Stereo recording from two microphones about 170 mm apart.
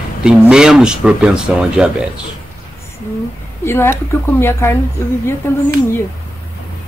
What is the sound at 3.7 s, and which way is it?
Speech, 15° left (ahead or behind).